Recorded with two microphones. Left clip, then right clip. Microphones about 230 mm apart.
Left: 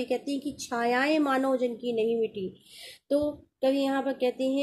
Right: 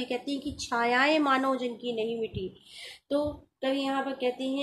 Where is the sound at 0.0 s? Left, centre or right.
Centre.